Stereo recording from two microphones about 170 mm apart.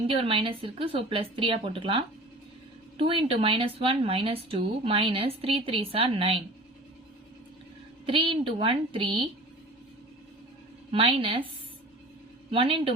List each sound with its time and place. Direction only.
0.1 s speech: 35° right (ahead or behind)
8.0 s a woman's voice: 30° right (ahead or behind)
10.9 s speech: 30° right (ahead or behind)
12.5 s speech: 35° right (ahead or behind)